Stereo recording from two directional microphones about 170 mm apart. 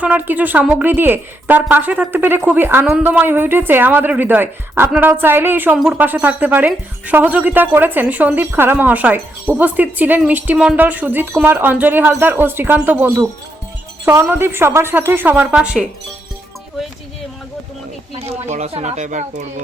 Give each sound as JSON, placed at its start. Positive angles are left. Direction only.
{"t": 0.0, "sound": "a woman's voice", "side_deg": -10}
{"t": 18.1, "sound": "speech", "side_deg": -35}